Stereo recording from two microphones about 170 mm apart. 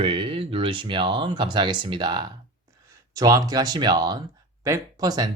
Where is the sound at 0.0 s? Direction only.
30° right (ahead or behind).